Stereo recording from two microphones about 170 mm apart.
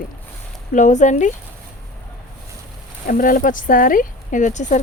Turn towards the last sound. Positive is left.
turn(degrees=45)  # may be behind; listen again after turning